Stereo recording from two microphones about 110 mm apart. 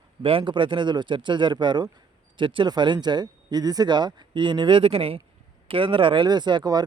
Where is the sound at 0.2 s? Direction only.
55° right (ahead or behind).